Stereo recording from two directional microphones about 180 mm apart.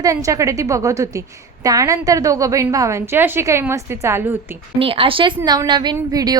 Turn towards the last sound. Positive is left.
turn(degrees=-20)  # may be behind; listen again after turning